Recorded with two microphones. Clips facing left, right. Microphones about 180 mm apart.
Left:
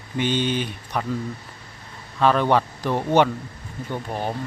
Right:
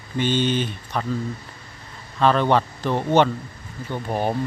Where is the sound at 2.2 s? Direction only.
10° left (ahead or behind).